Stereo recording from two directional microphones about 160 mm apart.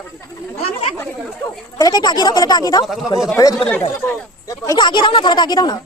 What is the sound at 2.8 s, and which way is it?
Speech, centre (ahead or behind).